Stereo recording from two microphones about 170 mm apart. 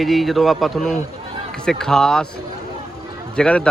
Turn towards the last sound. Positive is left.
turn(degrees=5)  # may be behind; listen again after turning